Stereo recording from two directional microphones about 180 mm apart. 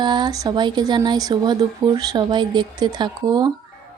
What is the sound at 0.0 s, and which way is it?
Speech, 25° right (ahead or behind).